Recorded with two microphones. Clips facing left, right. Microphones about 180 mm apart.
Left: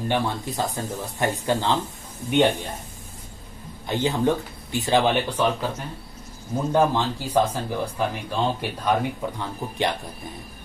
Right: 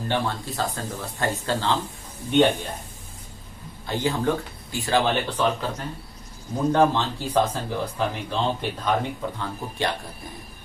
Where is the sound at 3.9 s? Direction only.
20° left (ahead or behind).